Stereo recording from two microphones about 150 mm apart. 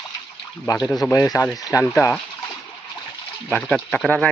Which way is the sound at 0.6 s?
25° left (ahead or behind).